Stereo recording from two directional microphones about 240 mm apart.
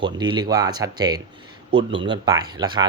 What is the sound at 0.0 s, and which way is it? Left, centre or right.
Speech, centre.